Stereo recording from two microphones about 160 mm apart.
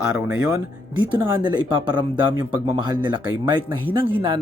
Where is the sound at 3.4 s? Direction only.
30° right (ahead or behind).